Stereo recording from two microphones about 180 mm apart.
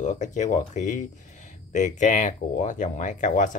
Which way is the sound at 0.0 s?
40° left (ahead or behind).